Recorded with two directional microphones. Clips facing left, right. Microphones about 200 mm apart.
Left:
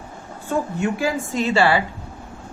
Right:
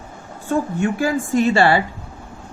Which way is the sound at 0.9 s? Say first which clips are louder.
Right 4 dB; 50° right (ahead or behind).